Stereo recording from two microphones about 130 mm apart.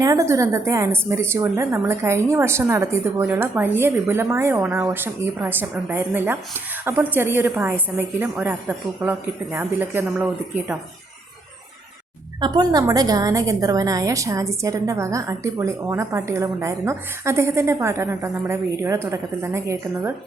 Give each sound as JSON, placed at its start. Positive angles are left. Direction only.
{"t": 0.0, "sound": "a woman's voice", "side_deg": -25}
{"t": 12.4, "sound": "a woman's voice", "side_deg": -30}